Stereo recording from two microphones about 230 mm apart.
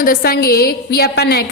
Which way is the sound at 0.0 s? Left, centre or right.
Left.